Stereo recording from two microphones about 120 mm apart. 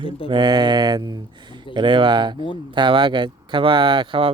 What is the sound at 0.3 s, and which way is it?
Speech, 35° right (ahead or behind).